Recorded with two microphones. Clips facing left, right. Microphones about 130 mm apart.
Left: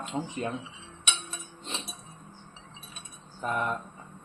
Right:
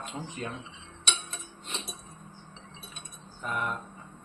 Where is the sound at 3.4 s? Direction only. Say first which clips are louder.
Left 3 dB; 30° left (ahead or behind).